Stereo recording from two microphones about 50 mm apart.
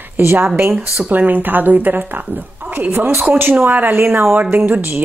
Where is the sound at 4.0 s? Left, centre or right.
Right.